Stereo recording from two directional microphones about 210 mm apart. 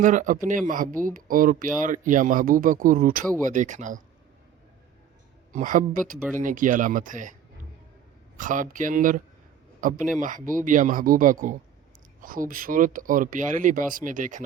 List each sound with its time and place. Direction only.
0.0 s speech: 35° right (ahead or behind)
5.5 s speech: 40° right (ahead or behind)
8.4 s speech: 40° right (ahead or behind)